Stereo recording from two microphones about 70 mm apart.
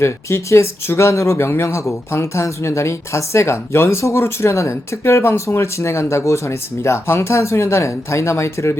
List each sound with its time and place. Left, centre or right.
0.0 s speech: left